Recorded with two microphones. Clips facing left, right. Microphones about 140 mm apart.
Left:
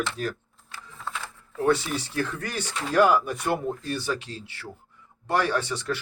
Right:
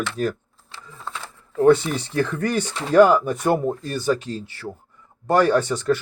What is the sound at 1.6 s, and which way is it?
Speech, 50° right (ahead or behind).